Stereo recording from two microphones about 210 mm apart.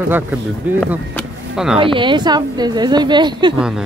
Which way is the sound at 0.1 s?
10° right (ahead or behind).